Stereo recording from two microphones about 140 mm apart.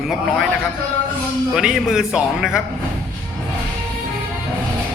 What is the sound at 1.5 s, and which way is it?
Speech, 5° right (ahead or behind).